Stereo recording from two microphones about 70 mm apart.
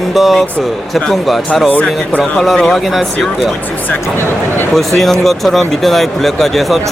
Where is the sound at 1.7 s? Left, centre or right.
Left.